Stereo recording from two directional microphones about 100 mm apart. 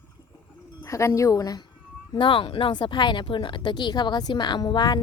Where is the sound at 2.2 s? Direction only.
55° left (ahead or behind).